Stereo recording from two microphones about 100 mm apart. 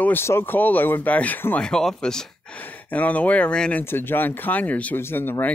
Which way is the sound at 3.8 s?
20° left (ahead or behind).